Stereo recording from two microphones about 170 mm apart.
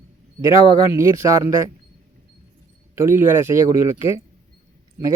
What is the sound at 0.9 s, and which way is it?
Speech, 15° right (ahead or behind).